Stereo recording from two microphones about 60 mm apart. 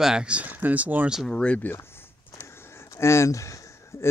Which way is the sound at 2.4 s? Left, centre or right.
Left.